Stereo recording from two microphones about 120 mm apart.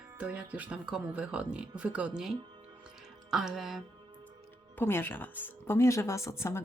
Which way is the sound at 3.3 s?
Centre (ahead or behind).